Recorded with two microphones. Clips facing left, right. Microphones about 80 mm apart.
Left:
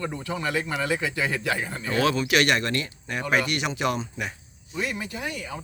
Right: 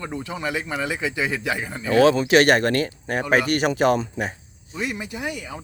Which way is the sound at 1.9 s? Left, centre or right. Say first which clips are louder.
Right 7 dB; right.